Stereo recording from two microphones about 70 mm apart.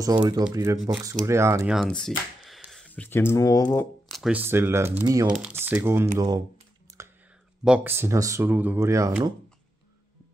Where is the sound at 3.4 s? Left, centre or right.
Left.